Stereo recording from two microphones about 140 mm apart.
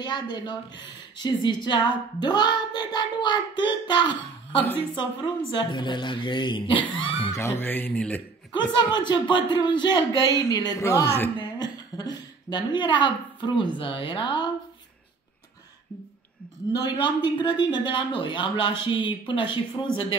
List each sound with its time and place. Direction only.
0.0 s a woman's voice: 30° left (ahead or behind)
7.3 s speech: 20° left (ahead or behind)
8.7 s a woman's voice: 30° left (ahead or behind)
16.7 s a woman's voice: 30° left (ahead or behind)